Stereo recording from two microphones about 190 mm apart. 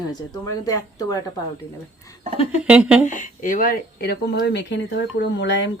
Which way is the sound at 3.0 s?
40° left (ahead or behind).